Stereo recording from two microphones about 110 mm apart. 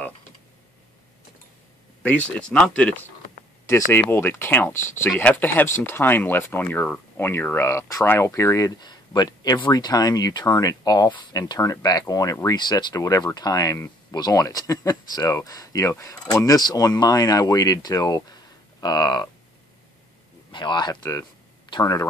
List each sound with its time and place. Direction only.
2.0 s speech: 10° left (ahead or behind)
3.9 s speech: 20° left (ahead or behind); by 19.3 s 40° left (ahead or behind)
20.5 s speech: 45° left (ahead or behind)